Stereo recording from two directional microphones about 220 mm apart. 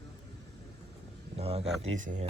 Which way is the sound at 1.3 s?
30° right (ahead or behind).